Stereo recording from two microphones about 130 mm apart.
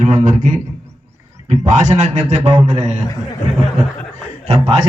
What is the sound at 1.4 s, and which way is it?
Speech, 75° right (ahead or behind).